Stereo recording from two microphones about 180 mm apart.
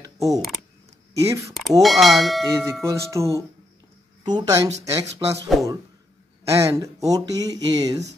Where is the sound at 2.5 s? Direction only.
15° right (ahead or behind).